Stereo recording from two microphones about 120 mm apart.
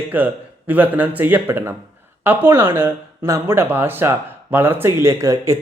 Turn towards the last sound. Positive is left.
turn(degrees=-25)  # may be behind; listen again after turning